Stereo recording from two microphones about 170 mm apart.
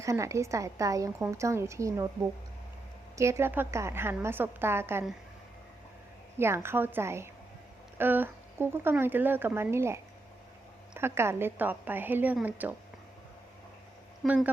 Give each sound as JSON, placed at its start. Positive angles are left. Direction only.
{"t": 0.0, "sound": "a woman's voice", "side_deg": -20}
{"t": 3.2, "sound": "a woman's voice", "side_deg": -15}
{"t": 6.4, "sound": "a woman's voice", "side_deg": -15}
{"t": 14.3, "sound": "a woman's voice", "side_deg": -10}